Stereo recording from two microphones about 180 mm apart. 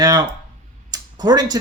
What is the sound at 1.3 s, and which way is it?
Speech, 20° right (ahead or behind).